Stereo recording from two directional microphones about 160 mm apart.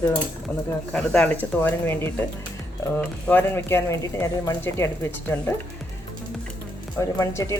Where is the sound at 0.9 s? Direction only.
5° left (ahead or behind).